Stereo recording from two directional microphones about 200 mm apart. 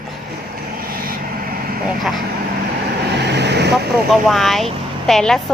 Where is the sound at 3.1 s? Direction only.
55° right (ahead or behind).